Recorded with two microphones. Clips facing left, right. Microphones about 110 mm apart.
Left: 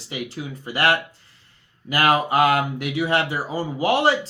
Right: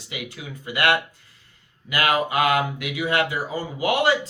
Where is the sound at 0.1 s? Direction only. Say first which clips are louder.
Left 4 dB; 35° left (ahead or behind).